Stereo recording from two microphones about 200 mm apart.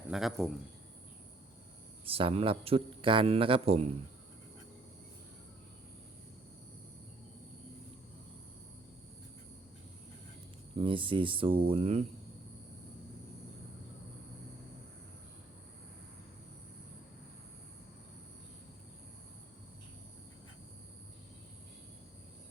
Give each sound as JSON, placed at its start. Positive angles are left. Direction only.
{"t": 0.1, "sound": "a man's voice", "side_deg": 0}
{"t": 2.0, "sound": "a man's voice", "side_deg": -25}
{"t": 10.8, "sound": "a man's voice", "side_deg": -25}